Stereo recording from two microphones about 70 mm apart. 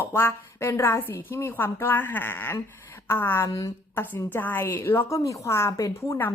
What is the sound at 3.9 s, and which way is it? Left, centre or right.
A woman's voice, left.